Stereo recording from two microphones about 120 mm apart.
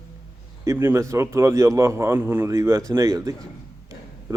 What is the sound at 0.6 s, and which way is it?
A man's voice, 20° right (ahead or behind).